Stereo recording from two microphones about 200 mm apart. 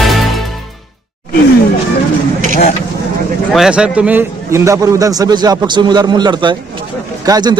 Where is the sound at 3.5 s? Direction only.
Centre (ahead or behind).